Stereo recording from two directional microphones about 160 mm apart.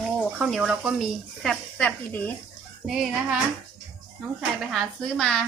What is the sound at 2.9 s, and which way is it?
Speech, 5° right (ahead or behind).